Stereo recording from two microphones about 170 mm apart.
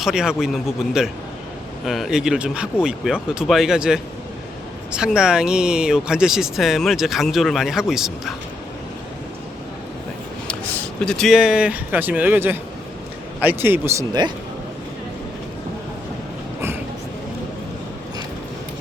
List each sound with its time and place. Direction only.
0.0 s speech: 5° right (ahead or behind)
10.5 s a man's voice: 10° left (ahead or behind); by 13.9 s 15° right (ahead or behind)
14.1 s speech: 25° right (ahead or behind)